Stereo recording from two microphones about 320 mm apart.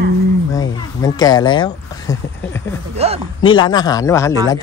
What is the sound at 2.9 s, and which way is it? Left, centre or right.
Speech, centre.